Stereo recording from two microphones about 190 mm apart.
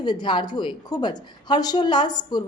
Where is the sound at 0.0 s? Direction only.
25° left (ahead or behind).